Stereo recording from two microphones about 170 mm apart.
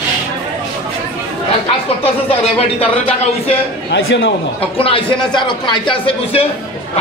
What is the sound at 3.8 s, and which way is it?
Speech, 90° left.